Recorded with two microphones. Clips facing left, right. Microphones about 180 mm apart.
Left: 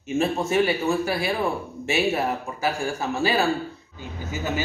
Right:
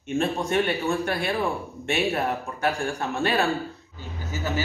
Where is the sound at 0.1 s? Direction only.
5° left (ahead or behind).